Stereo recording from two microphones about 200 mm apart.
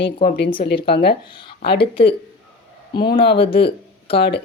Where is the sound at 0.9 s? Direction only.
55° left (ahead or behind).